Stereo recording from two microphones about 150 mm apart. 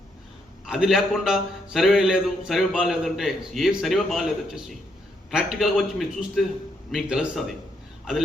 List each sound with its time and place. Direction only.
0.6 s a man's voice: 5° right (ahead or behind)